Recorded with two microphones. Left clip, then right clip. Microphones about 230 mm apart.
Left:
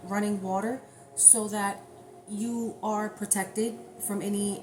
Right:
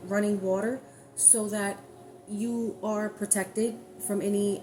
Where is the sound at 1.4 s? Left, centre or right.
Centre.